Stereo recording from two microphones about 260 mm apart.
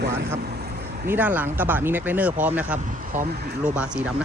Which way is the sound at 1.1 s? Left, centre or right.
Centre.